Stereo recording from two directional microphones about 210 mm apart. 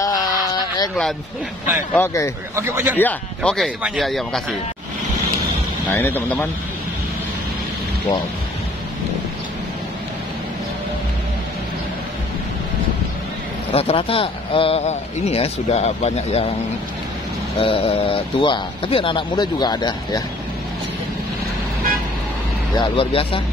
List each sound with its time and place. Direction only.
0.0 s a sound: 15° left (ahead or behind)
2.0 s speech: 15° left (ahead or behind)
2.5 s speech: 10° right (ahead or behind)
3.0 s speech: 5° left (ahead or behind)
5.9 s speech: 10° left (ahead or behind)
13.7 s speech: 30° left (ahead or behind)
17.6 s speech: 25° left (ahead or behind)
22.8 s speech: 25° left (ahead or behind)